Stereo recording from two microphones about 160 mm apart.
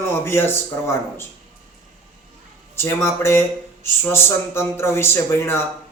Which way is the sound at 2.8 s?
15° left (ahead or behind).